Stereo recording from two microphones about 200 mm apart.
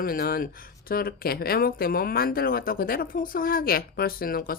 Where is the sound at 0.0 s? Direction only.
45° left (ahead or behind).